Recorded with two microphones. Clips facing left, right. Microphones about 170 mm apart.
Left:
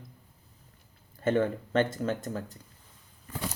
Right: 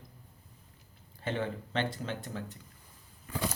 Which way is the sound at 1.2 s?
50° left (ahead or behind).